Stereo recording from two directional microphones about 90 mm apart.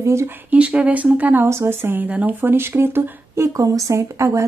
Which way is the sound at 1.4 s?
30° right (ahead or behind).